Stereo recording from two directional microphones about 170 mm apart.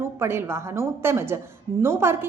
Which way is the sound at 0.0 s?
15° right (ahead or behind).